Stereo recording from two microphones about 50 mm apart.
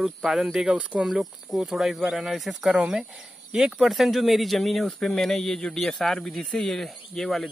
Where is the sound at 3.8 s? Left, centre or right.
Centre.